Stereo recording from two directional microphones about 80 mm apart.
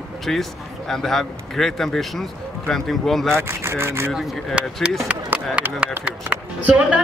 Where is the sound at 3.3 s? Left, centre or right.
Right.